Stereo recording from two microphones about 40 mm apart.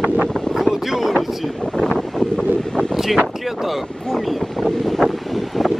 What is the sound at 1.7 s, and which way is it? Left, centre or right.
Wind noise, centre.